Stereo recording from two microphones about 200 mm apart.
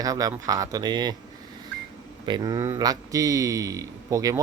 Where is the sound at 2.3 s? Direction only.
15° right (ahead or behind).